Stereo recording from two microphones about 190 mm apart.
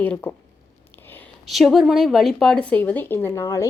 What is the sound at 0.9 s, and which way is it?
Whispering, 10° left (ahead or behind).